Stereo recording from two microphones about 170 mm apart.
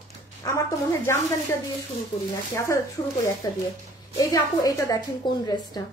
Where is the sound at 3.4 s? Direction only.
20° left (ahead or behind).